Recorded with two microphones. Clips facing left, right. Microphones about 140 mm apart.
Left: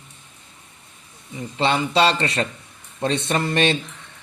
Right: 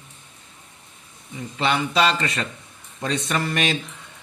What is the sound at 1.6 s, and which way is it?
Speech, 30° left (ahead or behind).